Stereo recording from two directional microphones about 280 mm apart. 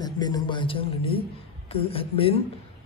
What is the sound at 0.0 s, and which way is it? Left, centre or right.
Speech, centre.